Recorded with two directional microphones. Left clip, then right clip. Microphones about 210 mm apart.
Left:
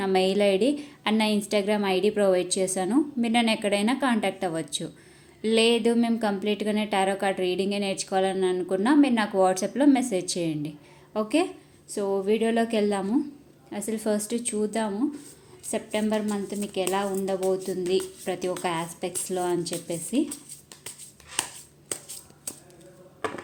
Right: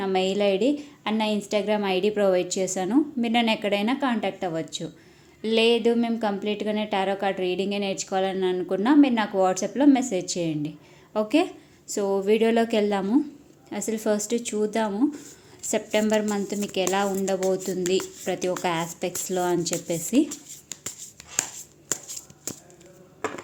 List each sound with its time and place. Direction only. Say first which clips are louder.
0.0 s a woman's voice: left 1 dB; centre (ahead or behind); by 20.2 s 20° right (ahead or behind)